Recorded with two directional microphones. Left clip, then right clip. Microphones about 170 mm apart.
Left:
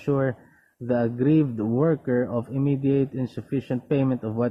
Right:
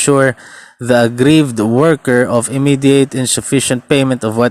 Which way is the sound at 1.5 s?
65° right (ahead or behind).